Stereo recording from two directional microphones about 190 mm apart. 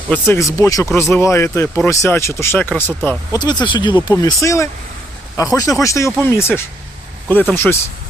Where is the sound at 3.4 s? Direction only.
25° left (ahead or behind).